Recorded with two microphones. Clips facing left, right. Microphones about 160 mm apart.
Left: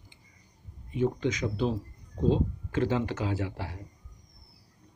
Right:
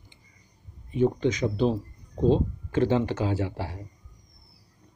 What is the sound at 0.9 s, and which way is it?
Speech, 30° right (ahead or behind).